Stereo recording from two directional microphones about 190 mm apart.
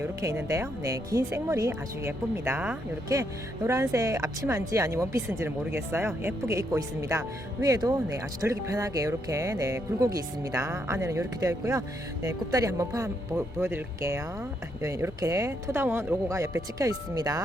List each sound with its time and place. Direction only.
0.0 s speech: 15° right (ahead or behind)